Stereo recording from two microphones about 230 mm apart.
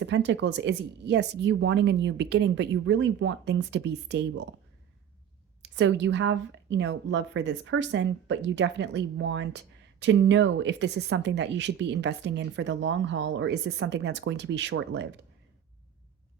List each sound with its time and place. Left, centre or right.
0.0 s a woman's voice: right
5.6 s a woman's voice: right